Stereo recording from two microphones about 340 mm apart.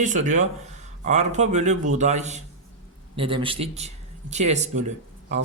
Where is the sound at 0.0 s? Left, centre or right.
Right.